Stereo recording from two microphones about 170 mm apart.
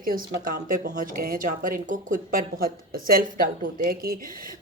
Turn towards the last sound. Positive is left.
turn(degrees=-60)  # may be behind; listen again after turning